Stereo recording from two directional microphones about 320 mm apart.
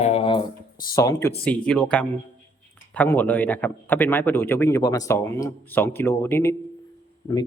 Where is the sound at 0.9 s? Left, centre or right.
Centre.